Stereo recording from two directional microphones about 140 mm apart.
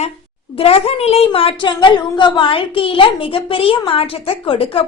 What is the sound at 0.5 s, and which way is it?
A woman's voice, 45° left (ahead or behind).